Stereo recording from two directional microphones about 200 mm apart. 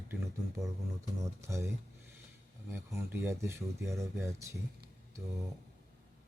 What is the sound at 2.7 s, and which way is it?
Speech, 10° right (ahead or behind).